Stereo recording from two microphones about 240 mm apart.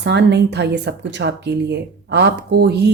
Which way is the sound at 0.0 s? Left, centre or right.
Right.